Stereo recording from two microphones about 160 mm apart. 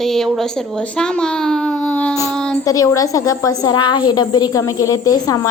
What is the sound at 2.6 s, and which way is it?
A woman's voice, 20° left (ahead or behind).